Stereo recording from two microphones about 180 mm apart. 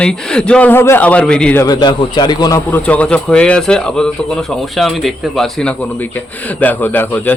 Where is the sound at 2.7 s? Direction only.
10° left (ahead or behind).